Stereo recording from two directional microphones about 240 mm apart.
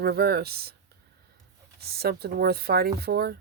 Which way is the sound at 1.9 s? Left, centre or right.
Right.